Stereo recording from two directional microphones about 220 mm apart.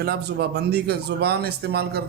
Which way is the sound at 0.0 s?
45° right (ahead or behind).